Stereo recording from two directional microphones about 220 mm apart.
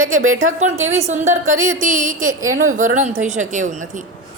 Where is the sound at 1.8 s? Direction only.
35° right (ahead or behind).